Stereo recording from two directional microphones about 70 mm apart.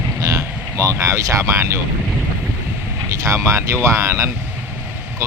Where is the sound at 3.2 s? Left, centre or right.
Right.